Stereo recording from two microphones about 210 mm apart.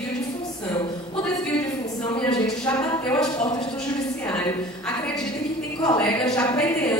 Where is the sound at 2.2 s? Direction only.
5° left (ahead or behind).